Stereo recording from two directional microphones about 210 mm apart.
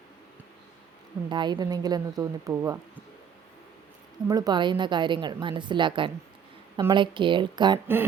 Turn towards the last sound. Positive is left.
turn(degrees=-20)  # may be behind; listen again after turning